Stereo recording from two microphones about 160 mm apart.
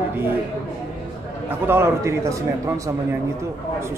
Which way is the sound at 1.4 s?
15° right (ahead or behind).